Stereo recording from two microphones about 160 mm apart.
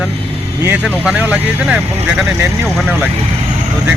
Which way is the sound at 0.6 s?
10° right (ahead or behind).